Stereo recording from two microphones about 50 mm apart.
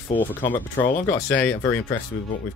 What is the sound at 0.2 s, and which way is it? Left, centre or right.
Speech, left.